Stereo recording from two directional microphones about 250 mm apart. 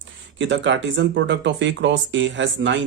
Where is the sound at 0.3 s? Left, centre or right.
Right.